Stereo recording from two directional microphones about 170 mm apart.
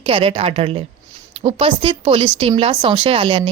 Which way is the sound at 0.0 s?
35° right (ahead or behind).